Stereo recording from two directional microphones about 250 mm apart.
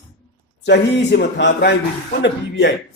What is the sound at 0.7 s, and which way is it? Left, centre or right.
A man's voice, left.